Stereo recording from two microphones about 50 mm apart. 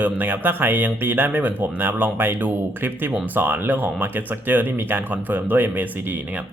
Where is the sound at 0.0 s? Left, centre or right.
Right.